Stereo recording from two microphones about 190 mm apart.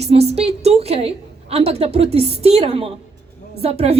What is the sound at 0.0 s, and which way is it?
A woman's voice, 35° right (ahead or behind).